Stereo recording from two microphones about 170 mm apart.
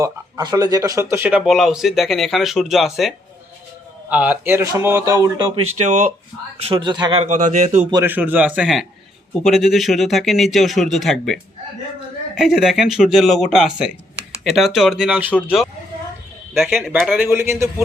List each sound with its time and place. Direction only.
0.0 s a man's voice: 20° right (ahead or behind)
5.5 s speech: 40° right (ahead or behind)
6.7 s speech: 30° right (ahead or behind)
7.2 s speech: 45° right (ahead or behind)
8.0 s a man's voice: 10° right (ahead or behind)
12.4 s speech: centre (ahead or behind)
17.2 s a man's voice: 15° right (ahead or behind)